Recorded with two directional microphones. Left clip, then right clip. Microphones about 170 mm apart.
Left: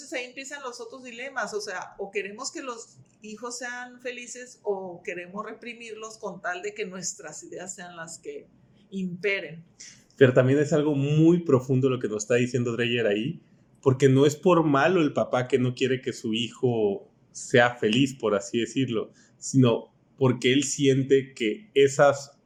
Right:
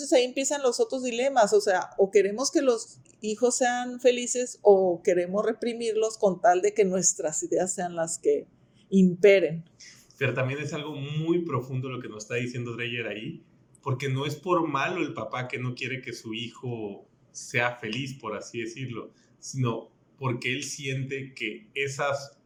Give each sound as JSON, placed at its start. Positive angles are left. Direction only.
{"t": 0.0, "sound": "speech", "side_deg": -50}
{"t": 9.8, "sound": "a man's voice", "side_deg": 40}